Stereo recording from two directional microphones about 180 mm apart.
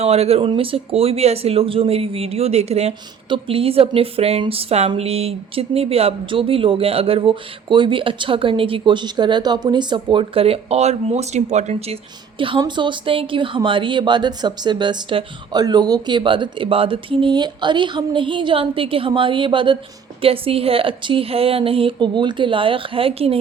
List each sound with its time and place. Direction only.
0.0 s speech: 35° right (ahead or behind)
12.4 s speech: 25° right (ahead or behind)